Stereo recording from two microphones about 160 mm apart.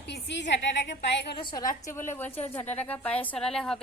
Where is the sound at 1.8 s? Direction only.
15° left (ahead or behind).